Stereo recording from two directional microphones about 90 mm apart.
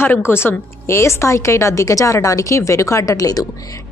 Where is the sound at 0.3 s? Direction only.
25° left (ahead or behind).